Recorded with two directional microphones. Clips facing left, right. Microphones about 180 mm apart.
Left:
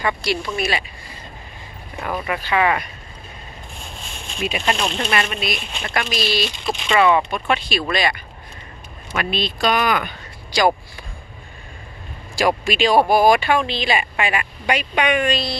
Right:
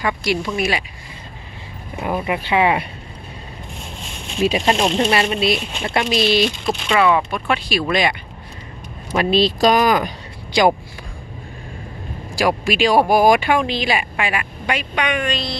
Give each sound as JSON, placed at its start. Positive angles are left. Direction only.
{"t": 0.0, "sound": "speech", "side_deg": -15}
{"t": 2.1, "sound": "speech", "side_deg": -15}
{"t": 4.4, "sound": "speech", "side_deg": -35}
{"t": 6.6, "sound": "speech", "side_deg": -5}
{"t": 9.1, "sound": "speech", "side_deg": -35}
{"t": 12.4, "sound": "speech", "side_deg": -10}